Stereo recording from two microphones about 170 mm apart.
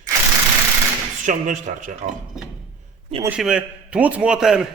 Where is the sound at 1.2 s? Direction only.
50° right (ahead or behind).